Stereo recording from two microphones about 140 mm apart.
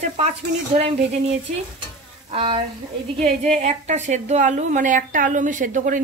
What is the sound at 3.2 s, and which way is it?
A woman's voice, 50° right (ahead or behind).